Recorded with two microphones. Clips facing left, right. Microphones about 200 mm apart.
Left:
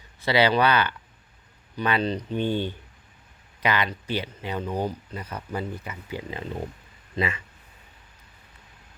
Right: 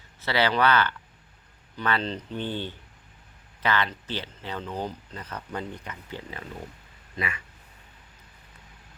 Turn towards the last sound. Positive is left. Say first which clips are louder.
# left 6 dB
turn(degrees=25)  # may be behind; listen again after turning